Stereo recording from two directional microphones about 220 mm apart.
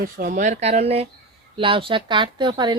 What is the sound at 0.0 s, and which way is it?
Speech, 40° right (ahead or behind).